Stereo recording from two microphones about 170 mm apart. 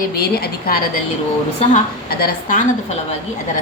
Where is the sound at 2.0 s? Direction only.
55° left (ahead or behind).